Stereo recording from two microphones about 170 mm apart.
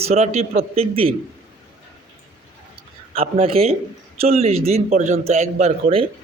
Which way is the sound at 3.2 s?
35° right (ahead or behind).